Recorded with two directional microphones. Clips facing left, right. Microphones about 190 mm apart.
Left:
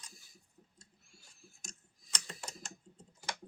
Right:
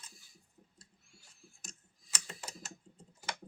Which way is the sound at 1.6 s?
5° right (ahead or behind).